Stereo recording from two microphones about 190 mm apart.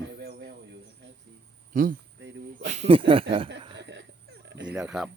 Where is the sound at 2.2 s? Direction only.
70° right (ahead or behind).